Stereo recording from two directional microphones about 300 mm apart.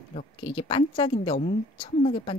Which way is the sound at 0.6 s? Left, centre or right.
Centre.